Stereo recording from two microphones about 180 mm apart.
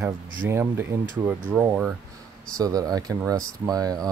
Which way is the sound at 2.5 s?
20° right (ahead or behind).